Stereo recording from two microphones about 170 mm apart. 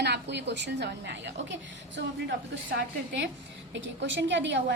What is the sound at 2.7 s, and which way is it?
A woman's voice, 90° right.